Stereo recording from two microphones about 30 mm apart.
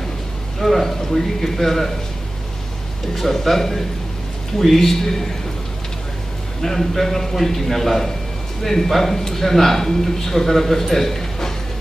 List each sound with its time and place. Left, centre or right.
0.6 s a man's voice: centre
3.3 s a man's voice: centre
6.6 s a man's voice: centre